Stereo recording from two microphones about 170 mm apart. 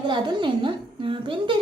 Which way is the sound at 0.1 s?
30° right (ahead or behind).